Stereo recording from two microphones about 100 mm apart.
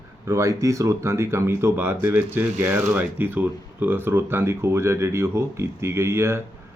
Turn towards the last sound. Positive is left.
turn(degrees=-25)  # may be behind; listen again after turning